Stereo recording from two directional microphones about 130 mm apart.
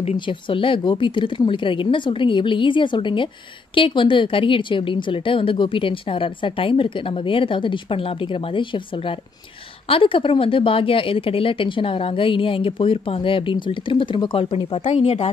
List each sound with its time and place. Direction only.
0.2 s a woman's voice: 40° left (ahead or behind)